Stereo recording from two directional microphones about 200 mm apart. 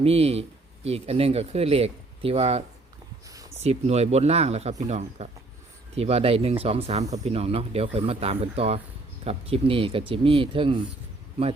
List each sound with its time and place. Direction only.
0.0 s speech: 30° right (ahead or behind)